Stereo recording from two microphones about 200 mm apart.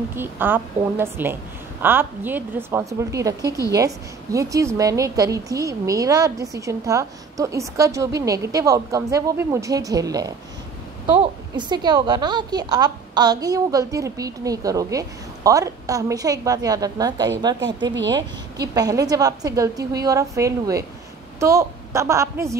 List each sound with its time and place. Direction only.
0.1 s a woman's voice: 10° right (ahead or behind)
18.8 s a woman's voice: 20° right (ahead or behind)